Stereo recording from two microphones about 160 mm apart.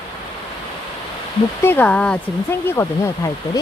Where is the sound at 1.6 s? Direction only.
10° left (ahead or behind).